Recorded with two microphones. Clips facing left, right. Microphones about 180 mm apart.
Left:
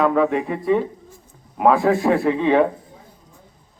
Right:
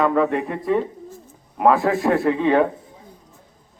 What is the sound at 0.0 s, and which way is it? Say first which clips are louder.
A man's voice: left 1 dB; centre (ahead or behind).